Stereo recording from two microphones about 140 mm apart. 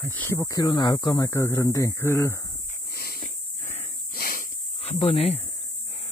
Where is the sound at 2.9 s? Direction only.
90° left; by 3.9 s 55° left (ahead or behind).